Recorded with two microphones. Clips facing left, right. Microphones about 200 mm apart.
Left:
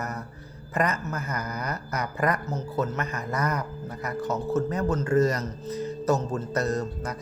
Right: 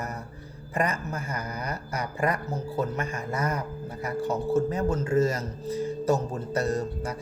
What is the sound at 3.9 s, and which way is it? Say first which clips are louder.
Music: right 1 dB; 30° right (ahead or behind).